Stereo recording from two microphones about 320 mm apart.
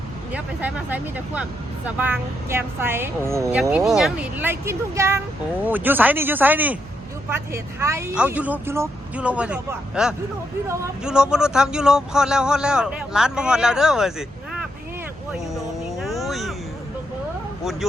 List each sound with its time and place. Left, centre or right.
0.3 s a woman's voice: centre
15.5 s a sound: centre
17.6 s speech: centre